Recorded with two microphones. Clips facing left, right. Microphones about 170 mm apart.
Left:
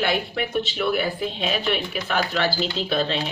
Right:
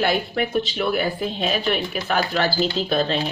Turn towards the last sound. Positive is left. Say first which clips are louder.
# right 3 dB
turn(degrees=-40)  # may be behind; listen again after turning